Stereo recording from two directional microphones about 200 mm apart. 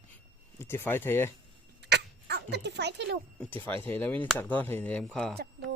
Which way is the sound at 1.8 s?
55° right (ahead or behind).